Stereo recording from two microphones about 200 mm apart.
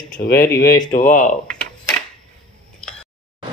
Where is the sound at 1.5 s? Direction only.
5° left (ahead or behind).